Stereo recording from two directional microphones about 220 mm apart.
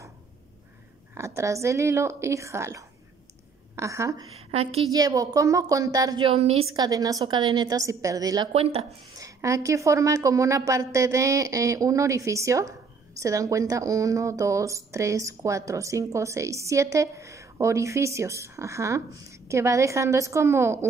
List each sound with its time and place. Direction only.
1.1 s speech: 10° right (ahead or behind)
4.5 s a woman's voice: 25° right (ahead or behind)
4.9 s speech: 15° right (ahead or behind)
6.7 s speech: 15° right (ahead or behind)